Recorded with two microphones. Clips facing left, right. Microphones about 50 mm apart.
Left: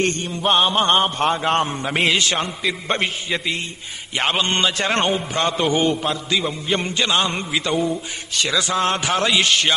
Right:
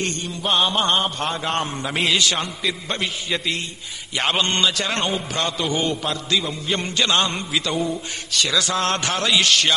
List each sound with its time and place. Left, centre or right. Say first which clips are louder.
0.0 s mantra: left 5 dB; left
0.5 s music: left 3 dB; centre
0.9 s a man's voice: left 4 dB; left
3.3 s music: left 1 dB; centre
4.5 s a man's voice: left 2 dB; left
7.1 s music: even; centre
7.3 s a man's voice: left 1 dB; left
7.7 s music: left 5 dB; centre
8.3 s a man's voice: even; left
8.7 s music: left 2 dB; centre
9.2 s a man's voice: right 1 dB; left